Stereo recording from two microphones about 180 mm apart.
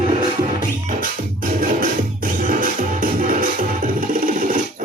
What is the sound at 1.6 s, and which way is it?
Music, 50° right (ahead or behind).